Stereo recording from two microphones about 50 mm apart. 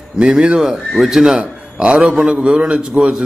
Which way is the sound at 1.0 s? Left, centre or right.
Centre.